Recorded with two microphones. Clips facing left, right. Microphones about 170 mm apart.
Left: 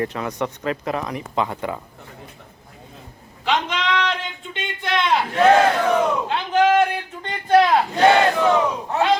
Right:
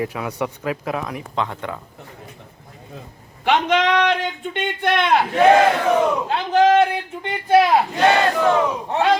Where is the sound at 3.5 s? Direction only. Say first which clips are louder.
Right 5 dB; 55° right (ahead or behind).